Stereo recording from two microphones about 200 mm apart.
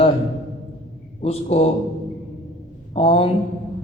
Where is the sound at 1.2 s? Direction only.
30° left (ahead or behind).